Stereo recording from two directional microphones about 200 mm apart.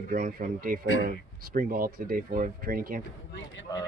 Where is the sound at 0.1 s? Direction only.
45° right (ahead or behind).